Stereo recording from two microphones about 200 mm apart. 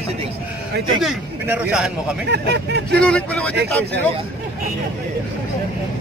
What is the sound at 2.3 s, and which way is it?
Speech, 55° right (ahead or behind).